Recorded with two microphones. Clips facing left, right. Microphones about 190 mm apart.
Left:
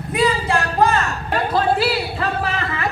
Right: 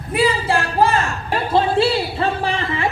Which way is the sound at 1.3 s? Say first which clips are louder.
Right 1 dB; 25° right (ahead or behind).